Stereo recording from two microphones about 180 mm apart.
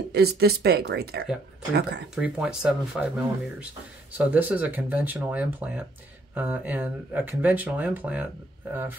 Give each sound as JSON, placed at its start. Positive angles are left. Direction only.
{"t": 0.1, "sound": "speech", "side_deg": -60}
{"t": 2.1, "sound": "speech", "side_deg": -5}